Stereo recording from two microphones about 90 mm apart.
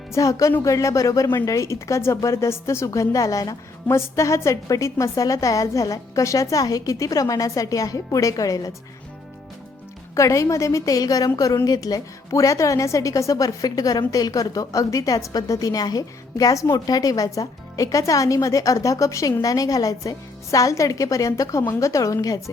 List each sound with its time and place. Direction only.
0.1 s a woman's voice: 40° left (ahead or behind)
10.2 s a woman's voice: 35° left (ahead or behind)